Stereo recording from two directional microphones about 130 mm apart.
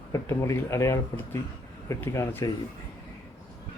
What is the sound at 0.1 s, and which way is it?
Speech, 20° left (ahead or behind).